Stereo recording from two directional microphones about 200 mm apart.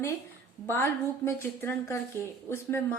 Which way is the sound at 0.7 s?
10° left (ahead or behind).